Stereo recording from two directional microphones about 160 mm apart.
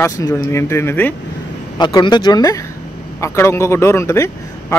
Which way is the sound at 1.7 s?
25° left (ahead or behind).